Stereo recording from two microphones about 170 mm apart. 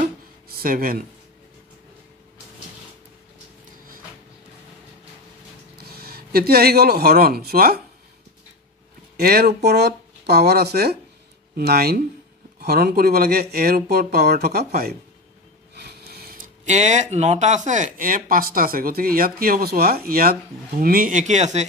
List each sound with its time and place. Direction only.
0.5 s speech: 60° right (ahead or behind)
5.8 s speech: 65° right (ahead or behind)
9.1 s speech: 65° right (ahead or behind); by 21.6 s 40° right (ahead or behind)